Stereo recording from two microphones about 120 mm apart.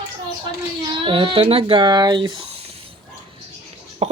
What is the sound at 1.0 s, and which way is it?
Speech, 45° right (ahead or behind).